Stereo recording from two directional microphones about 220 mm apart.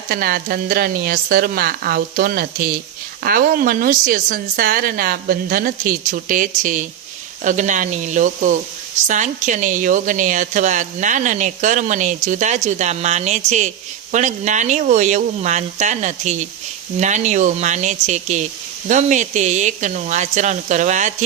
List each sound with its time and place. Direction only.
0.1 s a woman's voice: 40° right (ahead or behind)